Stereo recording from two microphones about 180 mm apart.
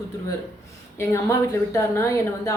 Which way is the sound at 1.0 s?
15° left (ahead or behind).